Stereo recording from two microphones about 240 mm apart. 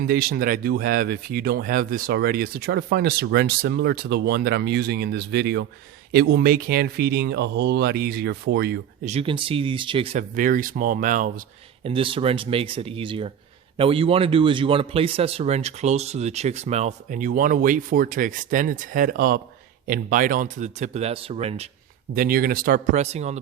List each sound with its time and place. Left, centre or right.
0.0 s speech: right
9.0 s speech: right
22.1 s speech: right